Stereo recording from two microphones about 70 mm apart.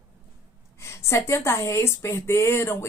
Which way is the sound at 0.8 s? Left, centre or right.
Left.